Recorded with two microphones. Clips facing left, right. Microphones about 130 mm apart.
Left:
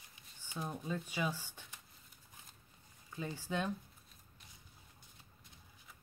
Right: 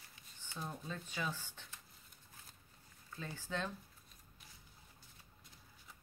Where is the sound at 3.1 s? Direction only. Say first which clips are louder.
Left 4 dB; 15° left (ahead or behind).